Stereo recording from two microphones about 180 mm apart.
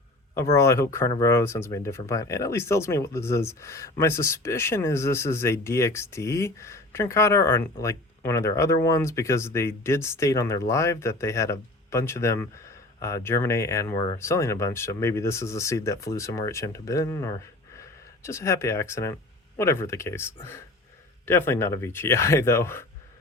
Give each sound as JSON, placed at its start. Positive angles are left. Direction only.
{"t": 0.3, "sound": "speech", "side_deg": 15}